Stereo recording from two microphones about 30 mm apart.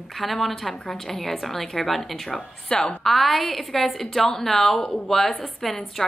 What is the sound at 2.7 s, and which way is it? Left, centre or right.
Speech, left.